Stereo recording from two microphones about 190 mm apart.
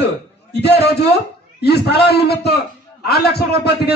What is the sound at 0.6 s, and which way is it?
A man's voice, 60° left (ahead or behind).